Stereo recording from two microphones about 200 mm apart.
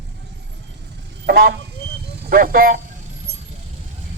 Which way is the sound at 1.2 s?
50° right (ahead or behind).